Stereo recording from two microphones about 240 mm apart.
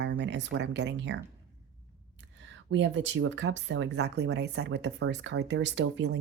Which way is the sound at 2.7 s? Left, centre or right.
Right.